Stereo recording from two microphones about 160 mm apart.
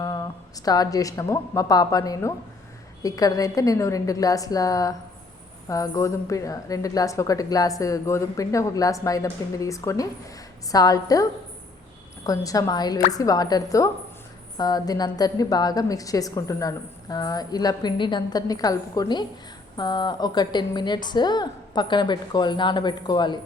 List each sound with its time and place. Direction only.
0.0 s a woman's voice: 25° left (ahead or behind)